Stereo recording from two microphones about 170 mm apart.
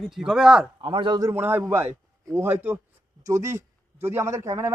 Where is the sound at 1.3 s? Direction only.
15° right (ahead or behind).